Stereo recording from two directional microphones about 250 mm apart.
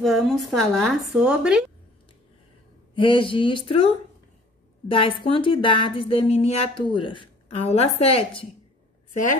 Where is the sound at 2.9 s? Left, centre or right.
Centre.